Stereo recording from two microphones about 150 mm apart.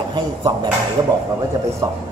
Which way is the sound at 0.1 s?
30° right (ahead or behind).